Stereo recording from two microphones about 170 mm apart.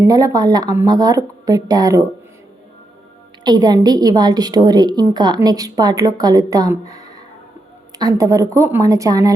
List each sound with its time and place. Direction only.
0.1 s a woman's voice: 20° right (ahead or behind)
3.4 s a woman's voice: 25° right (ahead or behind)